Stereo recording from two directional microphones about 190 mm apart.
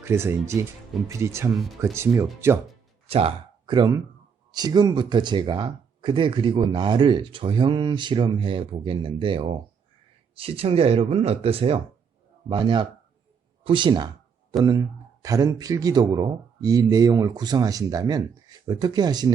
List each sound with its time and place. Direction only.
0.0 s speech: 15° right (ahead or behind)
1.5 s speech: centre (ahead or behind)
2.4 s speech: 15° right (ahead or behind)
3.1 s speech: 30° right (ahead or behind)
15.2 s speech: 20° right (ahead or behind)